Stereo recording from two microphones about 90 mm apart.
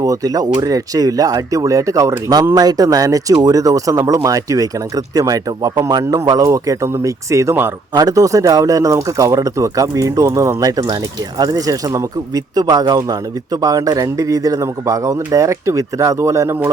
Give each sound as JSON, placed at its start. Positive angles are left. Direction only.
{"t": 0.0, "sound": "speech", "side_deg": -40}